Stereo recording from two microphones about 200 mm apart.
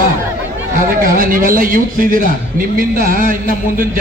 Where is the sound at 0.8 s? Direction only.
45° right (ahead or behind).